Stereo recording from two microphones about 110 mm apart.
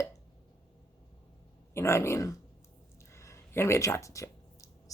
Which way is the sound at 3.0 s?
25° left (ahead or behind).